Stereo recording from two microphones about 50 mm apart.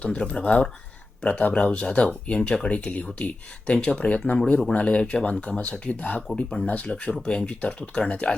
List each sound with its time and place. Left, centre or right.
0.0 s speech: left